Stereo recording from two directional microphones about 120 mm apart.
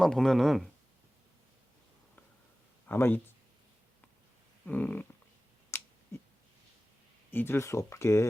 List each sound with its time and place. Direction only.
0.0 s speech: 5° left (ahead or behind)
2.8 s speech: 15° left (ahead or behind)
4.6 s a sound: 10° left (ahead or behind)
7.3 s speech: 20° left (ahead or behind)